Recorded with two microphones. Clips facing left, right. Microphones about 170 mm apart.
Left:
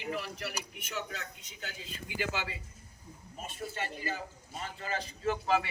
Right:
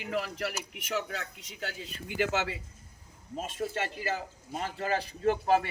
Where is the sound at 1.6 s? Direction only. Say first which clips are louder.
Right 5 dB; 60° right (ahead or behind).